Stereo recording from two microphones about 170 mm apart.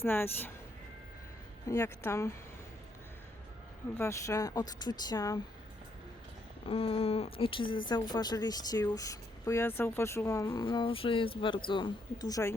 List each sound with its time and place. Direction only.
0.0 s speech: 15° left (ahead or behind)
1.6 s speech: 20° left (ahead or behind)
3.9 s speech: 15° left (ahead or behind)
6.7 s speech: 35° left (ahead or behind); by 10.7 s 20° left (ahead or behind)
10.7 s speech: 30° left (ahead or behind)